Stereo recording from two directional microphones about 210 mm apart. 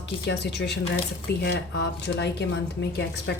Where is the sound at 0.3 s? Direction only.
55° left (ahead or behind).